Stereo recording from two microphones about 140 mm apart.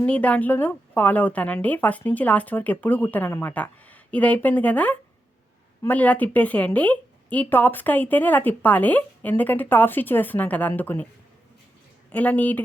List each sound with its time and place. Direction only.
0.0 s speech: 10° left (ahead or behind)
12.1 s speech: 10° left (ahead or behind)